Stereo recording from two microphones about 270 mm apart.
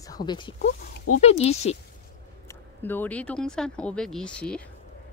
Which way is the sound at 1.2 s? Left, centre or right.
Left.